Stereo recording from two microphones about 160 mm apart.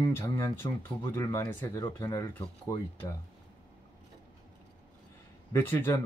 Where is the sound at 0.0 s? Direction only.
15° left (ahead or behind).